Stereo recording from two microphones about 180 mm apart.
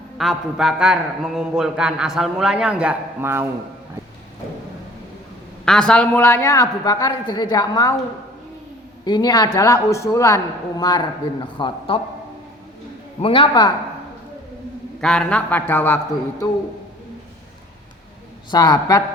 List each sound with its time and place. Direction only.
0.2 s a man's voice: centre (ahead or behind)
5.6 s a woman's voice: 5° left (ahead or behind); by 7.9 s 20° left (ahead or behind)
9.0 s speech: 20° left (ahead or behind)
13.2 s speech: 30° left (ahead or behind)
15.0 s a woman's voice: 5° left (ahead or behind)
18.5 s speech: 25° left (ahead or behind)